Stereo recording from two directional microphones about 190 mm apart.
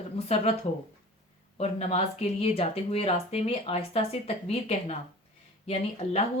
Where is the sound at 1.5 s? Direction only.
35° left (ahead or behind).